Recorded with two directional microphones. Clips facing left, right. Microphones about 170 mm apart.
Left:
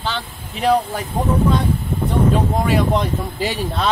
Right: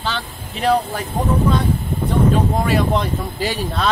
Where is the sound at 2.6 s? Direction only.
15° left (ahead or behind).